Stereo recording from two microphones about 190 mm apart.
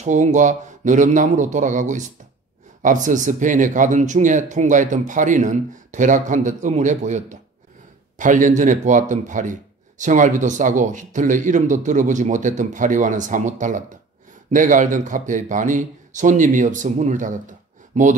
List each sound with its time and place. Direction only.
0.0 s a man's voice: 40° right (ahead or behind)